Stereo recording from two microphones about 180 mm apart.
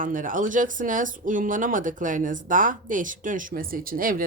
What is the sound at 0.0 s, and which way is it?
A woman's voice, 50° right (ahead or behind).